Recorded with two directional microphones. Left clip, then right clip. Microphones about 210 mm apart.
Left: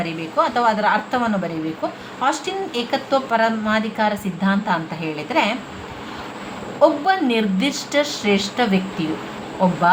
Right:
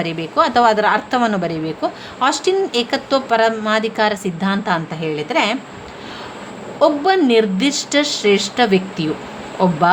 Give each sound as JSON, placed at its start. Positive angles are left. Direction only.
{"t": 0.0, "sound": "a woman's voice", "side_deg": -40}
{"t": 6.7, "sound": "a woman's voice", "side_deg": -35}